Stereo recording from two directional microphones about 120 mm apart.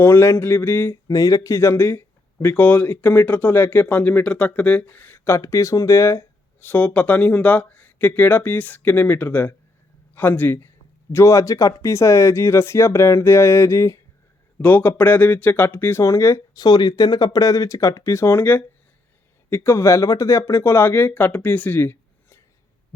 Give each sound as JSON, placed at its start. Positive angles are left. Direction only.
{"t": 0.0, "sound": "speech", "side_deg": 20}